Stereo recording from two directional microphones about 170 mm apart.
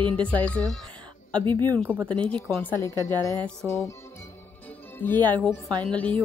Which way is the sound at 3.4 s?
15° left (ahead or behind).